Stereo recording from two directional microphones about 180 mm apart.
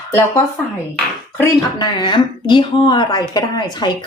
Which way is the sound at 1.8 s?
25° left (ahead or behind).